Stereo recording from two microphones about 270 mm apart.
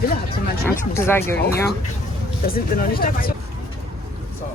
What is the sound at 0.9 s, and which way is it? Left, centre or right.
Speech, centre.